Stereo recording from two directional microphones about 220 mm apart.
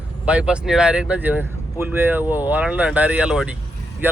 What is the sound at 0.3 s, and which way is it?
Speech, 5° right (ahead or behind).